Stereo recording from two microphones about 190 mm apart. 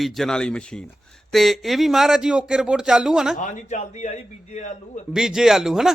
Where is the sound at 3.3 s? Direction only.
40° left (ahead or behind).